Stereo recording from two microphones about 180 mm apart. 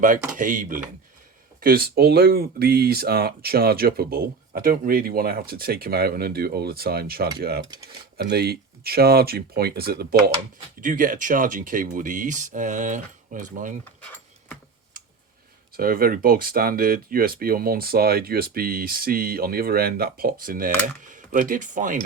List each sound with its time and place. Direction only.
0.3 s speech: 45° right (ahead or behind)
14.0 s a sound: 10° left (ahead or behind)
15.7 s speech: 55° right (ahead or behind)